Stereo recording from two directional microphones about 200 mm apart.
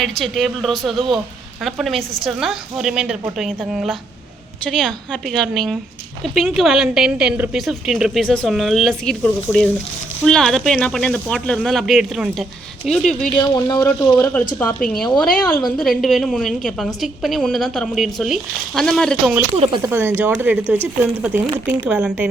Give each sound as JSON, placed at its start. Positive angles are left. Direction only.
{"t": 0.0, "sound": "a woman's voice", "side_deg": 0}
{"t": 13.3, "sound": "speech", "side_deg": 20}
{"t": 14.1, "sound": "a woman's voice", "side_deg": 10}
{"t": 19.8, "sound": "a woman's voice", "side_deg": -10}